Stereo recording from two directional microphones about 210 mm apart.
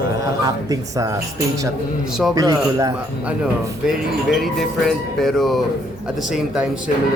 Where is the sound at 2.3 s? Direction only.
15° right (ahead or behind).